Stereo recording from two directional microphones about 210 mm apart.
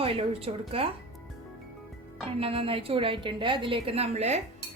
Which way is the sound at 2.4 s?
25° right (ahead or behind).